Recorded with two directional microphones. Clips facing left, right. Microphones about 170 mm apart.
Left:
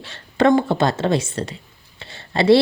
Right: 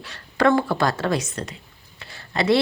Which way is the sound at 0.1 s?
20° left (ahead or behind).